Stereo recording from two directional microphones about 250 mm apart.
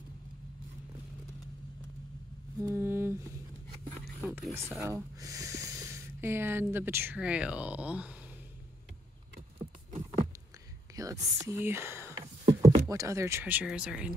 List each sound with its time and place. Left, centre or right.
2.6 s a sound: centre
5.2 s speech: centre
11.0 s whispering: centre
12.8 s speech: centre